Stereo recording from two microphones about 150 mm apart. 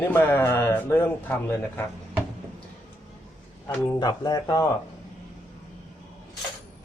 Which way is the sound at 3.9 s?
25° left (ahead or behind).